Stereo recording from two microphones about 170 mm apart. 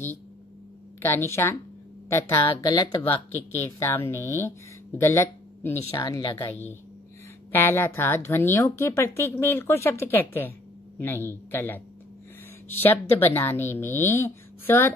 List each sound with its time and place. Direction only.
1.0 s speech: 15° left (ahead or behind)
7.5 s speech: 15° left (ahead or behind)